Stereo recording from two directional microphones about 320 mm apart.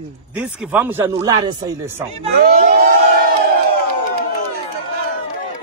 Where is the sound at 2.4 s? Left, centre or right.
Right.